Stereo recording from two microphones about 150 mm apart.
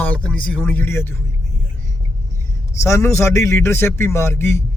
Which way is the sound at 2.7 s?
20° left (ahead or behind).